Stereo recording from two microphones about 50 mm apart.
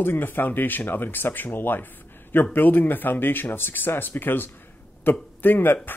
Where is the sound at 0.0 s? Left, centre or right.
Left.